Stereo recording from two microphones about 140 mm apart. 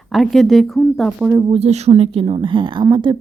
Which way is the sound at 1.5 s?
50° right (ahead or behind).